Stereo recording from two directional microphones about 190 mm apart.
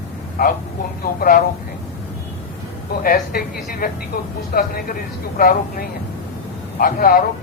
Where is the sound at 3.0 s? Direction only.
50° left (ahead or behind).